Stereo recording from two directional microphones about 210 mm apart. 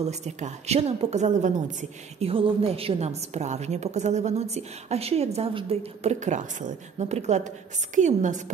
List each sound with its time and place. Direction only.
0.0 s a woman's voice: 30° right (ahead or behind)